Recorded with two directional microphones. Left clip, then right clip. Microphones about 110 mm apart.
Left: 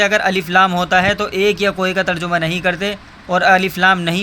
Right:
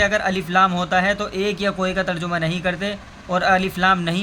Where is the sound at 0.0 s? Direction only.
40° left (ahead or behind).